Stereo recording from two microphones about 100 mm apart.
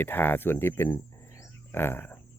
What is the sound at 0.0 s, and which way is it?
Speech, 20° left (ahead or behind).